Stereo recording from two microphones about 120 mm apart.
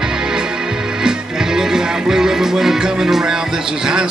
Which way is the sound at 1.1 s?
5° right (ahead or behind).